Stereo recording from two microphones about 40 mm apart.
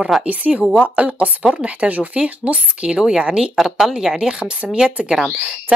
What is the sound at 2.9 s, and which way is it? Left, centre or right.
Speech, centre.